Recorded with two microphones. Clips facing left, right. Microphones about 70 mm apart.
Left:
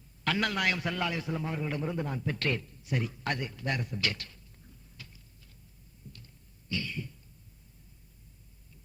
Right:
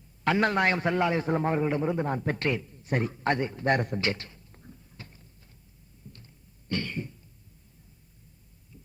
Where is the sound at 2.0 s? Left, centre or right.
Right.